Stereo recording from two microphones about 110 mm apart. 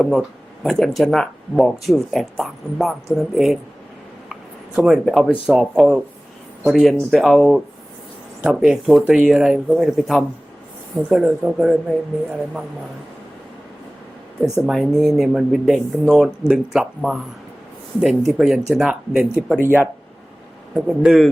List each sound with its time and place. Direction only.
0.0 s speech: 5° left (ahead or behind)
4.8 s speech: centre (ahead or behind)
14.4 s speech: 5° right (ahead or behind)
18.3 s speech: centre (ahead or behind)
19.5 s speech: 20° right (ahead or behind)
20.7 s speech: 5° right (ahead or behind)